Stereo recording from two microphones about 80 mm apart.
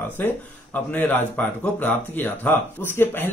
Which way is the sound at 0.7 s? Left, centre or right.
Left.